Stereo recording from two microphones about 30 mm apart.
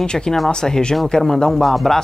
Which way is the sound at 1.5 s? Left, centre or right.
Centre.